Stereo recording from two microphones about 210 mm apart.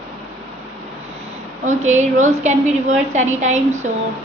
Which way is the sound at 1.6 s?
35° right (ahead or behind).